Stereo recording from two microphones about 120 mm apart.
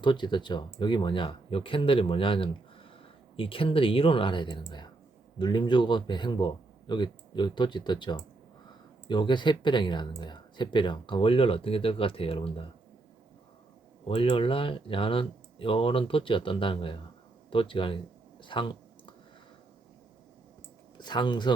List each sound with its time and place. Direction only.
0.0 s a man's voice: 40° left (ahead or behind)
14.1 s speech: 55° left (ahead or behind)
18.4 s clicking: 45° left (ahead or behind)
21.0 s a man's voice: 40° left (ahead or behind)